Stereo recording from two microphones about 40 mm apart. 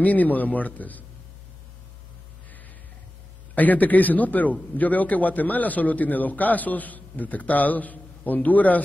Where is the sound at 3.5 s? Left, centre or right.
Left.